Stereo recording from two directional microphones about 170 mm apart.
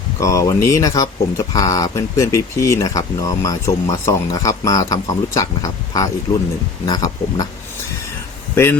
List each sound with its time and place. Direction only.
0.2 s speech: 20° left (ahead or behind)
8.5 s speech: 15° left (ahead or behind)